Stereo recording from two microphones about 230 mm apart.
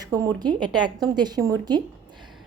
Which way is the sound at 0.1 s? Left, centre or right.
Centre.